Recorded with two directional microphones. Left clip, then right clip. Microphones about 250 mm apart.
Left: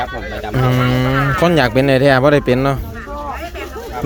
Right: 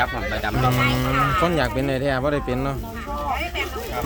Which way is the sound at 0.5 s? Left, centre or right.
Left.